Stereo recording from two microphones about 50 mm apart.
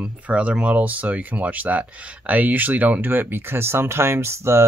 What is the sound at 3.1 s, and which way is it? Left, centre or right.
Speech, right.